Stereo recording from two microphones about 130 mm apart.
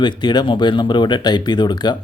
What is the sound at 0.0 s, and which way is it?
Speech, 35° left (ahead or behind).